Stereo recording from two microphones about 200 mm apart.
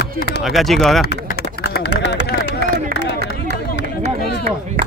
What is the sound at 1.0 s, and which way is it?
Speech, 55° left (ahead or behind).